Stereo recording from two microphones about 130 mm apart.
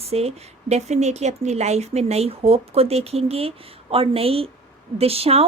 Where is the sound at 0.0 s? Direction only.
50° right (ahead or behind).